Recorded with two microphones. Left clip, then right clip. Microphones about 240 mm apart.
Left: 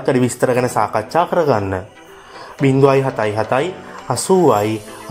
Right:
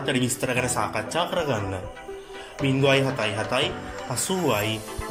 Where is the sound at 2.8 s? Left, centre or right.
Left.